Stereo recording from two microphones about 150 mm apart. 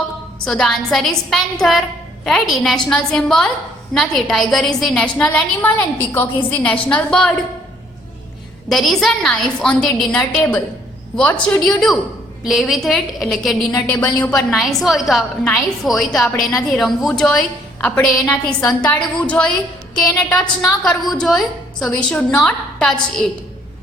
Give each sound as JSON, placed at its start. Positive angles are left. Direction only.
{"t": 0.4, "sound": "a woman's voice", "side_deg": 5}
{"t": 8.7, "sound": "a woman's voice", "side_deg": 0}